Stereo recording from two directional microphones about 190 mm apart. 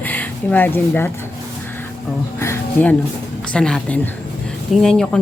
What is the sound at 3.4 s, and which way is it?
Speech, 5° left (ahead or behind).